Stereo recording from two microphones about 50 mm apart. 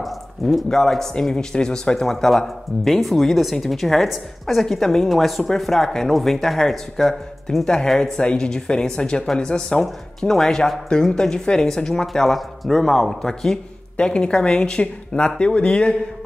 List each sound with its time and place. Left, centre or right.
0.0 s a sound: centre
0.7 s speech: centre
2.0 s a woman's voice: centre; by 15.9 s left